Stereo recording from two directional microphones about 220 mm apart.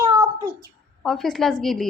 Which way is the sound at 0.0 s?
15° right (ahead or behind).